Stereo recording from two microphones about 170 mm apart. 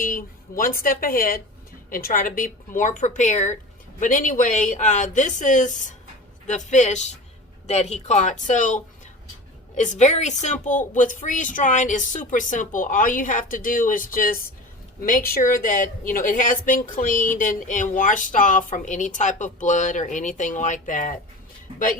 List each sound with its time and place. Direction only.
0.0 s a woman's voice: 55° left (ahead or behind)